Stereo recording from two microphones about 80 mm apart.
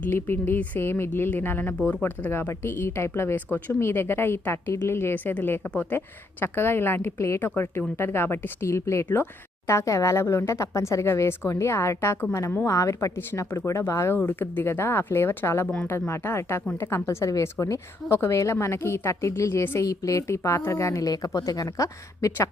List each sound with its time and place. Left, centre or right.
0.1 s a woman's voice: left
14.2 s speech: left
15.6 s speech: centre
15.9 s a woman's voice: left
19.8 s a woman's voice: left
21.1 s speech: left